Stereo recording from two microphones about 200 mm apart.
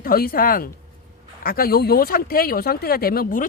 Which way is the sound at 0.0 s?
50° left (ahead or behind).